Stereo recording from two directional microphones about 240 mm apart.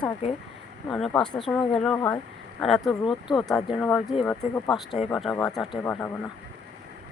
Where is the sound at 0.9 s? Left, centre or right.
Centre.